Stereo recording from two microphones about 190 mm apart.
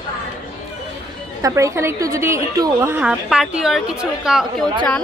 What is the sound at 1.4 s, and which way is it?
A woman's voice, 15° right (ahead or behind).